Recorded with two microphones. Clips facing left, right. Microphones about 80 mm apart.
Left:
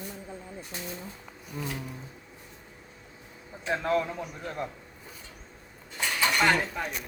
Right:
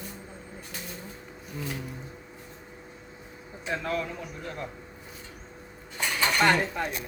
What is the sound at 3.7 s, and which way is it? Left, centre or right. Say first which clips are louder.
Speech: left 3 dB; left.